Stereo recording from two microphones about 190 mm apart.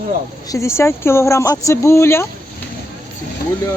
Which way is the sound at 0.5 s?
15° left (ahead or behind).